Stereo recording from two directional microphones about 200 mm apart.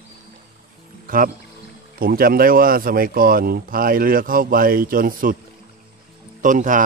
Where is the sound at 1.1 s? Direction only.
45° right (ahead or behind).